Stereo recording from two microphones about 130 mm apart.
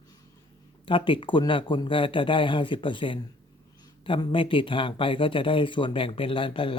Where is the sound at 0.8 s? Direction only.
40° left (ahead or behind).